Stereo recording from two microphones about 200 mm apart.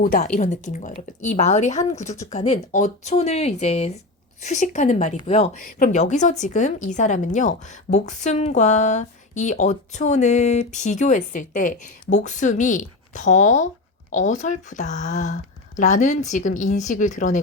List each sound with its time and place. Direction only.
0.0 s a woman's voice: 45° left (ahead or behind)